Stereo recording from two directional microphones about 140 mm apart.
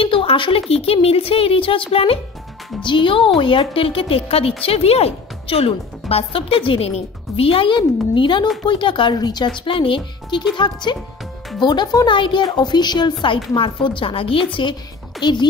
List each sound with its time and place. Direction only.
0.0 s a woman's voice: 40° left (ahead or behind)